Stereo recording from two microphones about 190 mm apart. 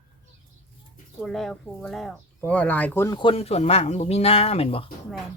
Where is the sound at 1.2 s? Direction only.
Centre (ahead or behind); by 4.9 s 30° left (ahead or behind).